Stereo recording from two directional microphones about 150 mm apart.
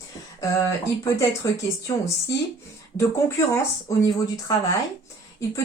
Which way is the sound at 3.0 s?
20° left (ahead or behind).